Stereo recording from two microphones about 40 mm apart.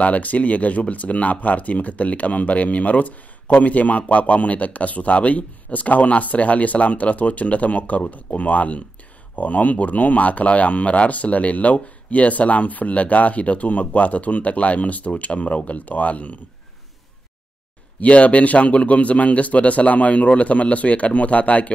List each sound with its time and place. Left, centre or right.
0.0 s speech: left
18.0 s speech: left